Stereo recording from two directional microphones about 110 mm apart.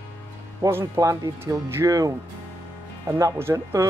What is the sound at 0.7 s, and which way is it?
Speech, 25° right (ahead or behind).